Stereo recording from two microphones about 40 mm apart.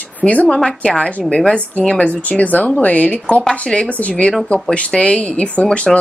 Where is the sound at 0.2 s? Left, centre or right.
Left.